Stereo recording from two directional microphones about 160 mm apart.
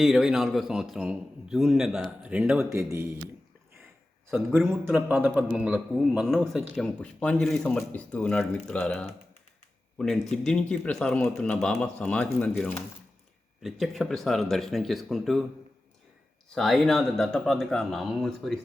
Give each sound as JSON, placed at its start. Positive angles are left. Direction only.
{"t": 0.0, "sound": "a man's voice", "side_deg": -5}
{"t": 2.6, "sound": "speech", "side_deg": -15}
{"t": 4.5, "sound": "a man's voice", "side_deg": -10}
{"t": 10.3, "sound": "speech", "side_deg": 5}
{"t": 13.6, "sound": "a man's voice", "side_deg": 0}
{"t": 16.6, "sound": "a man's voice", "side_deg": 0}